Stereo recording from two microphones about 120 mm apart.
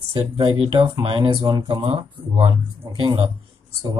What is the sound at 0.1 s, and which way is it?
Speech, 45° right (ahead or behind).